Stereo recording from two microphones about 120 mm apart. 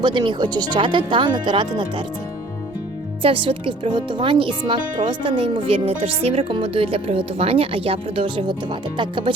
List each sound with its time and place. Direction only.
0.0 s speech: 40° right (ahead or behind)
3.2 s speech: 45° right (ahead or behind)